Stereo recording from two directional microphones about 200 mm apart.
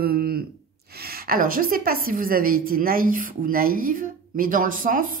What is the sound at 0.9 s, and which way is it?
A woman's voice, 50° right (ahead or behind).